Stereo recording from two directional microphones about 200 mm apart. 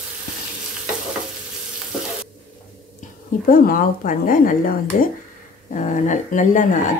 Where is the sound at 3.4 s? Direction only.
45° left (ahead or behind).